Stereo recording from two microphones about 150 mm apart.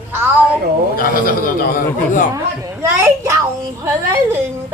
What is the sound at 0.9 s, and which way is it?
A man's voice, 70° left (ahead or behind).